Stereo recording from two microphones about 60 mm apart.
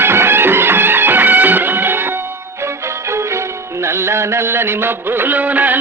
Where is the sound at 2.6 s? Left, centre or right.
Right.